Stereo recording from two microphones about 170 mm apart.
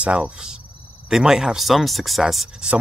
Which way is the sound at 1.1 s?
5° right (ahead or behind).